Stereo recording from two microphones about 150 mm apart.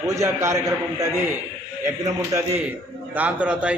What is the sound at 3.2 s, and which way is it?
Speech, 10° right (ahead or behind).